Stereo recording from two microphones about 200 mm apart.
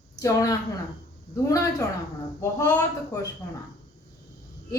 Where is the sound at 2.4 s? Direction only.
15° left (ahead or behind).